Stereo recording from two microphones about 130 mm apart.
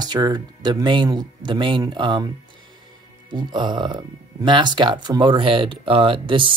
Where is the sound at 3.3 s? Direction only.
35° right (ahead or behind).